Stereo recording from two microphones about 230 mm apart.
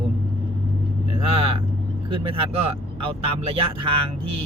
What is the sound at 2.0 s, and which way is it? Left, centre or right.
Speech, right.